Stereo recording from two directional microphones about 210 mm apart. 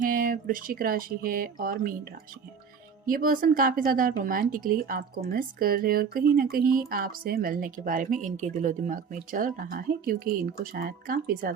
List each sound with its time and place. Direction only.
0.0 s speech: 40° right (ahead or behind)
3.1 s speech: 45° right (ahead or behind)